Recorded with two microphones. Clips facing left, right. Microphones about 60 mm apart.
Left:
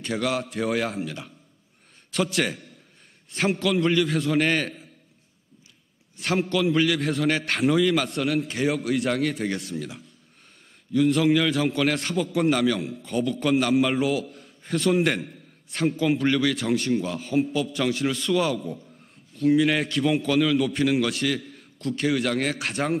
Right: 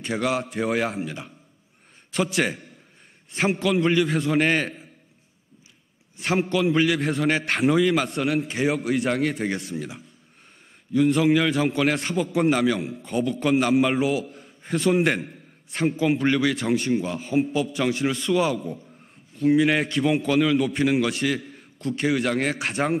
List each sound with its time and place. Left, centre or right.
0.0 s a man's voice: right
0.4 s a man's voice: centre
2.1 s a man's voice: centre
6.2 s a man's voice: centre
7.5 s a man's voice: centre
7.8 s a man's voice: centre
8.8 s a man's voice: centre
10.9 s a man's voice: centre
11.1 s a man's voice: centre
16.5 s a man's voice: centre
18.5 s a man's voice: centre
22.7 s a man's voice: centre